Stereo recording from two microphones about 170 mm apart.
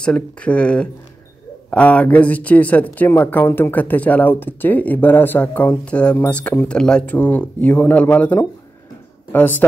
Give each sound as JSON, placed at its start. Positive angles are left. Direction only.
{"t": 0.0, "sound": "speech", "side_deg": 5}